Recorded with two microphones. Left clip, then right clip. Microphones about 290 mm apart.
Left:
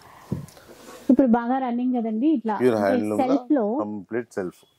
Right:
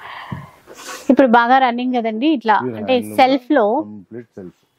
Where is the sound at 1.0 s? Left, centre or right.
Centre.